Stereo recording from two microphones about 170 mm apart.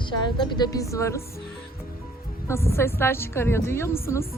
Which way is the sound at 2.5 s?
15° left (ahead or behind).